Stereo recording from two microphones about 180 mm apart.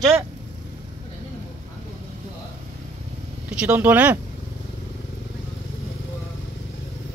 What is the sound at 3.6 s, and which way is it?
Speech, 10° right (ahead or behind).